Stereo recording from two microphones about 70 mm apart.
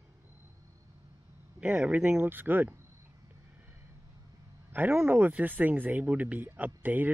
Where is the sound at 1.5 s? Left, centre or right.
Centre.